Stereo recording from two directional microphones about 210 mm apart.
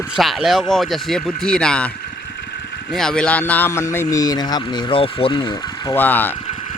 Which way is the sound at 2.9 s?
5° left (ahead or behind).